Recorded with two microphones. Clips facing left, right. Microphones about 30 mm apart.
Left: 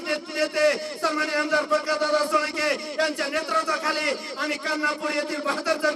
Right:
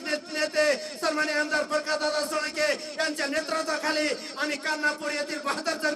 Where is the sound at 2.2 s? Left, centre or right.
Left.